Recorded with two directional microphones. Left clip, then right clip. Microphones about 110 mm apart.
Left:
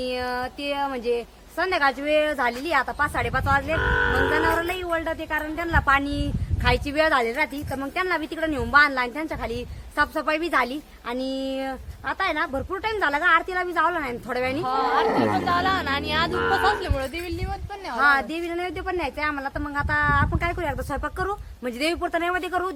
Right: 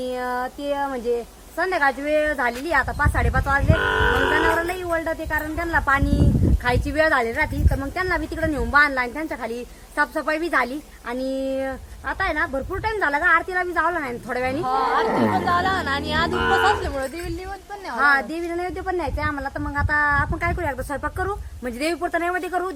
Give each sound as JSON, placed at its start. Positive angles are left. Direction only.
{"t": 0.0, "sound": "speech", "side_deg": 5}
{"t": 1.5, "sound": "speech", "side_deg": 15}
{"t": 3.8, "sound": "speech", "side_deg": -90}
{"t": 4.6, "sound": "a woman's voice", "side_deg": 15}
{"t": 7.9, "sound": "a woman's voice", "side_deg": 5}
{"t": 14.6, "sound": "speech", "side_deg": -10}
{"t": 17.9, "sound": "a woman's voice", "side_deg": 20}